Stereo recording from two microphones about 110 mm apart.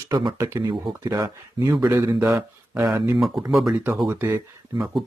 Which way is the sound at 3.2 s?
Centre (ahead or behind).